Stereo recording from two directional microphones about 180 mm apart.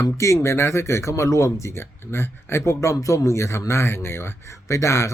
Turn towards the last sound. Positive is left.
turn(degrees=15)  # may be behind; listen again after turning